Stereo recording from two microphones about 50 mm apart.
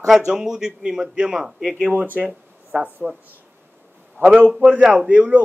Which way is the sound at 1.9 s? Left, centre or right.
Right.